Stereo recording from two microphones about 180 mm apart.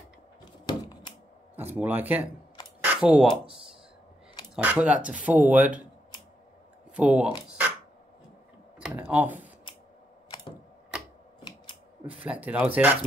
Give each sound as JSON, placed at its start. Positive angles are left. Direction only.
{"t": 0.7, "sound": "a sound", "side_deg": 25}
{"t": 1.8, "sound": "speech", "side_deg": -10}
{"t": 4.6, "sound": "speech", "side_deg": -5}
{"t": 7.0, "sound": "speech", "side_deg": -5}
{"t": 7.4, "sound": "a sound", "side_deg": -10}
{"t": 8.8, "sound": "speech", "side_deg": -10}
{"t": 12.1, "sound": "speech", "side_deg": -10}